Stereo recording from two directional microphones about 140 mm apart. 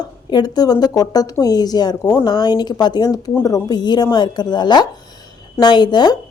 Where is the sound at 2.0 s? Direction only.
15° left (ahead or behind).